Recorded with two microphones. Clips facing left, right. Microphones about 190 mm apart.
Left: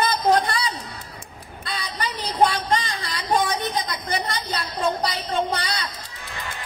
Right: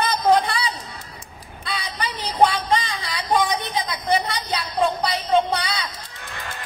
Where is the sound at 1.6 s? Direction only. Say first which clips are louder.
Right 1 dB; 45° left (ahead or behind).